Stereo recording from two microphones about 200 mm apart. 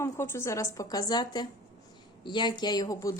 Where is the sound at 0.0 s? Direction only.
15° left (ahead or behind).